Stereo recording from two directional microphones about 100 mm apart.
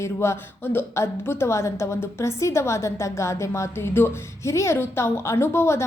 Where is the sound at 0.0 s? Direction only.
25° left (ahead or behind).